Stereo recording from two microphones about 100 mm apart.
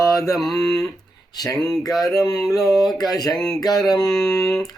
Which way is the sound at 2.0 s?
35° left (ahead or behind).